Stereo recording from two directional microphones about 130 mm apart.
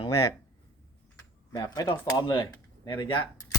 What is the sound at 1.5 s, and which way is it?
Speech, 30° left (ahead or behind).